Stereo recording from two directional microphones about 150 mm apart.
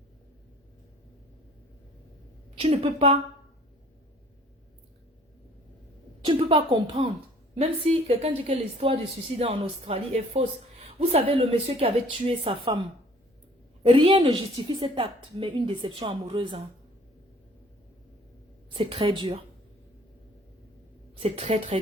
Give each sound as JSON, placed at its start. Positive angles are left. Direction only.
{"t": 2.6, "sound": "a woman's voice", "side_deg": -40}
{"t": 6.2, "sound": "a woman's voice", "side_deg": -35}
{"t": 13.8, "sound": "a woman's voice", "side_deg": -35}
{"t": 18.7, "sound": "a woman's voice", "side_deg": -35}
{"t": 21.2, "sound": "a woman's voice", "side_deg": -45}